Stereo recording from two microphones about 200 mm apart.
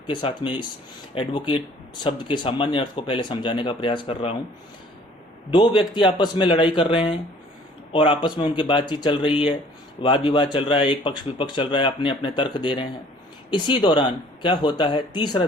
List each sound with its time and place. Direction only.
0.1 s speech: 25° left (ahead or behind)
5.5 s speech: 25° left (ahead or behind)